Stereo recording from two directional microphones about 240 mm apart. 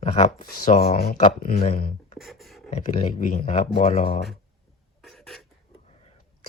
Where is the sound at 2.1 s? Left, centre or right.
Centre.